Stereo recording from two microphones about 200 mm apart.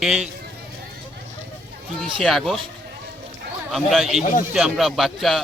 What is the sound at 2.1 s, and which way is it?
Speech, centre (ahead or behind).